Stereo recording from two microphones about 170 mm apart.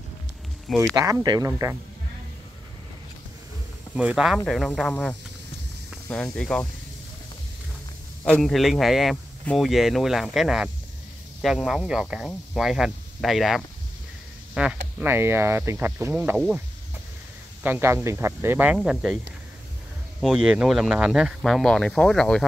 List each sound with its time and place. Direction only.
0.9 s speech: 20° right (ahead or behind)
3.9 s speech: 5° right (ahead or behind)
8.2 s speech: 5° left (ahead or behind); by 16.3 s 15° right (ahead or behind)
16.3 s speech: centre (ahead or behind)
17.6 s speech: 15° right (ahead or behind)
20.2 s speech: centre (ahead or behind)